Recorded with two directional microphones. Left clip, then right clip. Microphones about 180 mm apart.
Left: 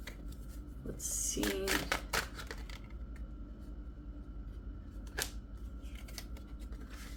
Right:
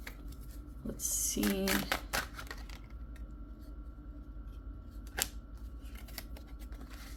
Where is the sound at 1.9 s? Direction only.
30° right (ahead or behind).